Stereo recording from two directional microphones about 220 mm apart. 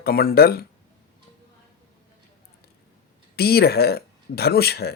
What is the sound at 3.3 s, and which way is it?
Speech, 45° left (ahead or behind).